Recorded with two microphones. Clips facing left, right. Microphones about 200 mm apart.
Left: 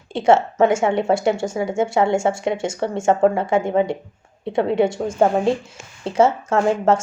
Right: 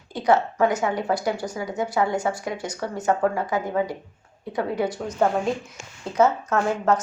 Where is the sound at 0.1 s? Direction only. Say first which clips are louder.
Left 5 dB; 25° left (ahead or behind).